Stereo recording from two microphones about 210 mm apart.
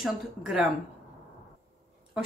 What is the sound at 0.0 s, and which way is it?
Speech, centre (ahead or behind).